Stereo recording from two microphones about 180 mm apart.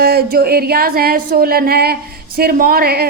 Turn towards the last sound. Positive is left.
turn(degrees=-60)  # may be behind; listen again after turning